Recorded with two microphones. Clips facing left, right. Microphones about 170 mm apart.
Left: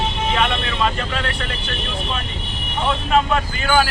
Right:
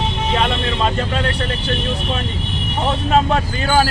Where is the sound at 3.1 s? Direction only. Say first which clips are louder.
Right 2 dB; 35° right (ahead or behind).